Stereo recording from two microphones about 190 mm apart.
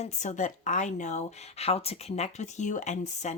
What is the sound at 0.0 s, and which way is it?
Speech, 40° left (ahead or behind).